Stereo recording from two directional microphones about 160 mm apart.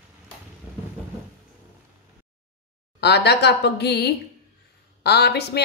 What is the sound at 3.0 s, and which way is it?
A woman's voice, 90° left.